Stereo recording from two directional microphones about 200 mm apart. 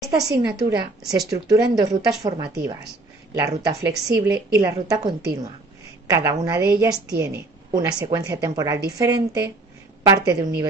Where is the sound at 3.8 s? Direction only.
55° right (ahead or behind).